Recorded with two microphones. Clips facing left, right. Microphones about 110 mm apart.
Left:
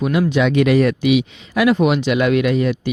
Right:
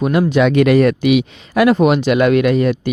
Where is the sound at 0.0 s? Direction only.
45° right (ahead or behind).